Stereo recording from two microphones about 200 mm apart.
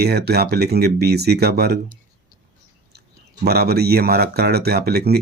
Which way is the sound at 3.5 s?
50° right (ahead or behind).